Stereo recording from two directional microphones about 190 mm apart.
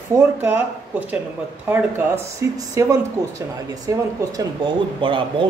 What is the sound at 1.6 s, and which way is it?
Speech, 10° right (ahead or behind).